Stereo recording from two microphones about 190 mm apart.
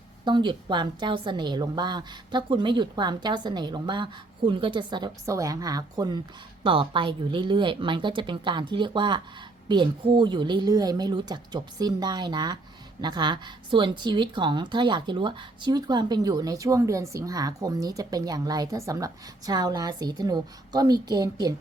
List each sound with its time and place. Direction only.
0.3 s a woman's voice: 25° right (ahead or behind)